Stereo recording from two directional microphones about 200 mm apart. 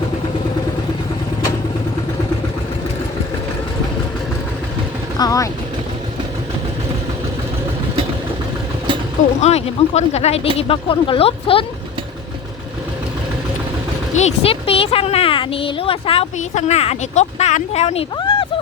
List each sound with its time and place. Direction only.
5.1 s vehicle: 20° left (ahead or behind)
9.4 s speech: 30° left (ahead or behind)
14.1 s speech: 35° left (ahead or behind)